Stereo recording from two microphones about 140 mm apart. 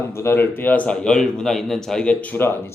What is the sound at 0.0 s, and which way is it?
A man's voice, 20° left (ahead or behind).